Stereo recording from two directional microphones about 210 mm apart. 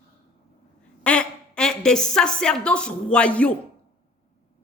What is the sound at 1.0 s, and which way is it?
A woman's voice, 5° left (ahead or behind).